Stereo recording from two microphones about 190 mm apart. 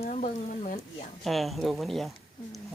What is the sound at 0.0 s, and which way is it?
Speech, 35° left (ahead or behind).